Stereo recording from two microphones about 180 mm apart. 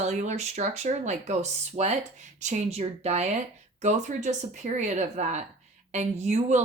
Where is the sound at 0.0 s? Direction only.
40° right (ahead or behind).